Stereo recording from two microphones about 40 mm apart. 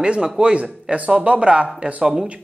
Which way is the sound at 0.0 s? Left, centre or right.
Right.